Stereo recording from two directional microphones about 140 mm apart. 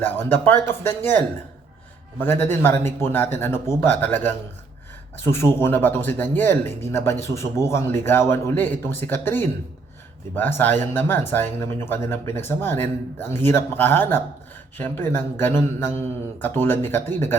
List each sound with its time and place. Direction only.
0.0 s speech: 15° left (ahead or behind)